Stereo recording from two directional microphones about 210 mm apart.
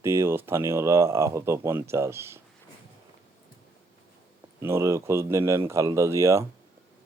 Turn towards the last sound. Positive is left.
turn(degrees=-15)  # may be behind; listen again after turning